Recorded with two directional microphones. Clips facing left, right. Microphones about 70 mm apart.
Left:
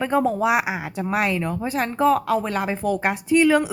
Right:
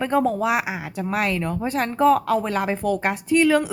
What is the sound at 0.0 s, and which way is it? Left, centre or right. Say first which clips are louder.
Speech: even; centre.